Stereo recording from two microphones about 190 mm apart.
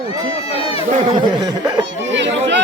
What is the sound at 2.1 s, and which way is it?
Speech, 70° right (ahead or behind).